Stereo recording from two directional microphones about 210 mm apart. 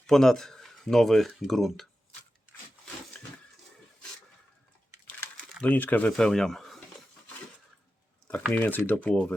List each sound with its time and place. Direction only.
0.1 s speech: centre (ahead or behind)
3.1 s a sound: 5° left (ahead or behind)
5.0 s crumpling: 5° left (ahead or behind)
8.4 s speech: 5° left (ahead or behind)